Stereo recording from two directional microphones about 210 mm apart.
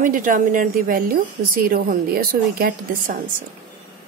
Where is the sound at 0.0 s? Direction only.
40° right (ahead or behind).